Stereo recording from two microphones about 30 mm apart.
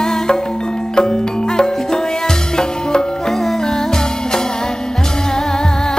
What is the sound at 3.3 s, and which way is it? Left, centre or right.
Music, centre.